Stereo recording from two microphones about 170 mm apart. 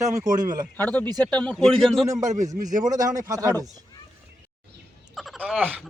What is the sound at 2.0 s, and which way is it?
A man's voice, 20° right (ahead or behind).